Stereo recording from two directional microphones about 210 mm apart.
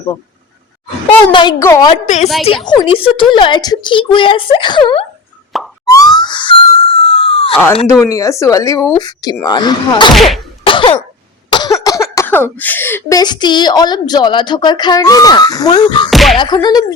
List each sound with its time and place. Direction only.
1.3 s speech: 20° left (ahead or behind)
2.0 s a woman's voice: 35° left (ahead or behind)
5.8 s music: 15° left (ahead or behind)
8.0 s speech: 15° left (ahead or behind)
10.2 s whack: centre (ahead or behind)
10.6 s cough: 25° left (ahead or behind)
11.5 s speech: 20° left (ahead or behind)
16.0 s music: centre (ahead or behind)
16.4 s speech: 20° left (ahead or behind)